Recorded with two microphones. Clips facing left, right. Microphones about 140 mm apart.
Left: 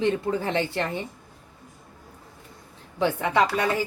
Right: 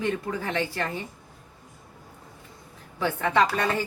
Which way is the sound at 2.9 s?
20° left (ahead or behind).